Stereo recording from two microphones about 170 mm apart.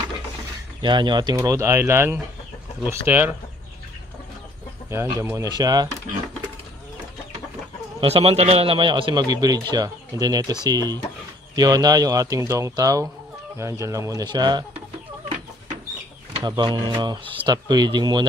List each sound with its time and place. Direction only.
0.8 s speech: 25° right (ahead or behind); by 3.3 s 10° right (ahead or behind)
4.9 s a man's voice: 20° right (ahead or behind)
8.0 s a man's voice: 35° right (ahead or behind)
16.4 s a man's voice: 25° right (ahead or behind)